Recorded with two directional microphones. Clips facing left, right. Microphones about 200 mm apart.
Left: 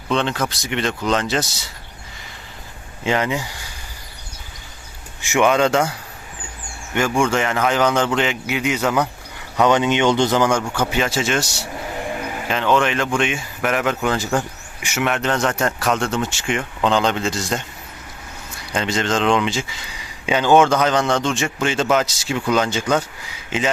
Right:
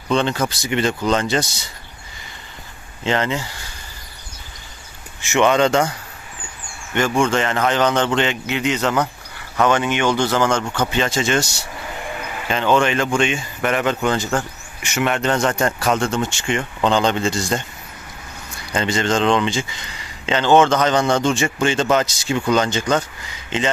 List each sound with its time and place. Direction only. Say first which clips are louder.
0.1 s speech: right 2 dB; centre (ahead or behind)
3.0 s speech: even; 10° left (ahead or behind)
5.2 s speech: right 1 dB; 10° left (ahead or behind)
7.2 s speech: even; 10° left (ahead or behind)
12.5 s speech: right 1 dB; centre (ahead or behind)
18.7 s speech: right 1 dB; centre (ahead or behind)